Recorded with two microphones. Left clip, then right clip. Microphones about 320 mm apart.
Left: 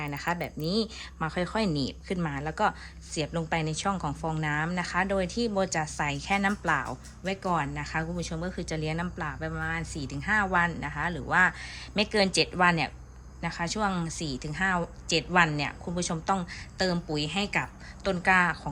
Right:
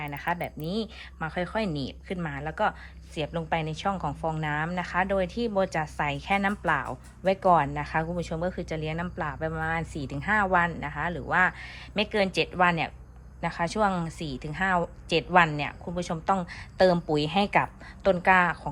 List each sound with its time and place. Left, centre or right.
0.0 s a woman's voice: centre